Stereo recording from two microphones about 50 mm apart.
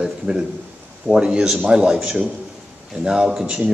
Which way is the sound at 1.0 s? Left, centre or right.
Centre.